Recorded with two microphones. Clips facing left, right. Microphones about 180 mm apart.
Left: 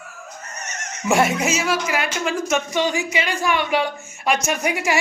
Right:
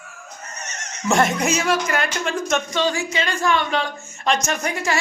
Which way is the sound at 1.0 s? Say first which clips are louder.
Even; 5° left (ahead or behind).